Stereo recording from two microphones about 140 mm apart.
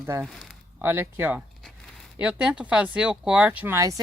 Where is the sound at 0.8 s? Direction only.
15° right (ahead or behind).